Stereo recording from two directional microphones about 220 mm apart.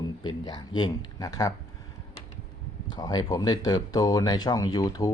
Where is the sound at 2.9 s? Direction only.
20° left (ahead or behind).